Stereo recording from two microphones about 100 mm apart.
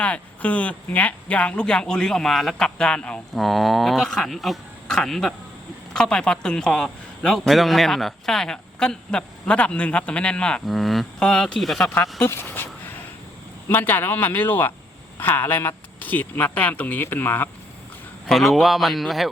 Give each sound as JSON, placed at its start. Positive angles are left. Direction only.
{"t": 0.0, "sound": "a man's voice", "side_deg": 15}
{"t": 12.2, "sound": "speech", "side_deg": 20}
{"t": 13.7, "sound": "speech", "side_deg": 20}
{"t": 18.3, "sound": "speech", "side_deg": 0}